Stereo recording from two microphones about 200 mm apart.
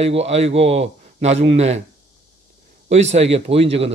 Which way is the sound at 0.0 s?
30° right (ahead or behind).